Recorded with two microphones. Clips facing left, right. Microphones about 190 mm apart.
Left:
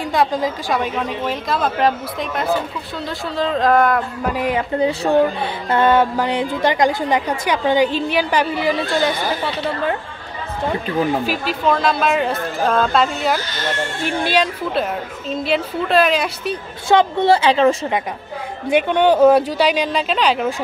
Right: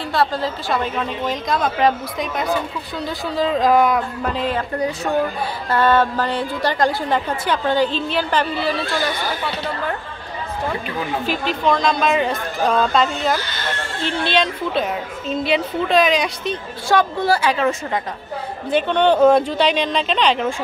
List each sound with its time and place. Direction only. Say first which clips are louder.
0.1 s a woman's voice: left 1 dB; 15° left (ahead or behind)
5.0 s speech: left 5 dB; 25° left (ahead or behind)
5.7 s a woman's voice: left 2 dB; 15° left (ahead or behind)
11.2 s a woman's voice: even; 5° left (ahead or behind)
16.9 s speech: left 4 dB; 25° left (ahead or behind)
18.7 s a woman's voice: left 2 dB; 10° left (ahead or behind)